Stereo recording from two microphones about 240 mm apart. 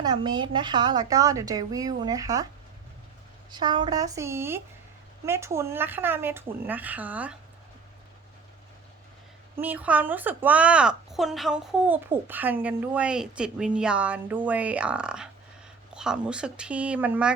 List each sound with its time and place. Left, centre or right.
0.0 s a woman's voice: centre
3.5 s a woman's voice: centre
9.6 s a woman's voice: centre